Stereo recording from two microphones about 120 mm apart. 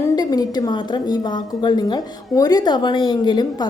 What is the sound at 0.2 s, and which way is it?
A woman's voice, 35° left (ahead or behind).